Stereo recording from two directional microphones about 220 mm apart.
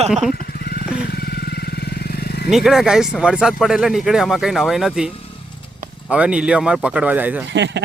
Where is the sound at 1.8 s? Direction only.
45° left (ahead or behind).